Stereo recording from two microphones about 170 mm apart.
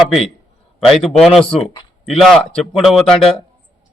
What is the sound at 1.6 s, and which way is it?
Speech, 30° left (ahead or behind).